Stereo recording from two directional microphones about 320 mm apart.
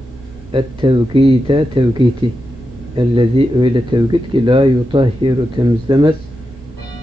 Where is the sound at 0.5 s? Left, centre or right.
Centre.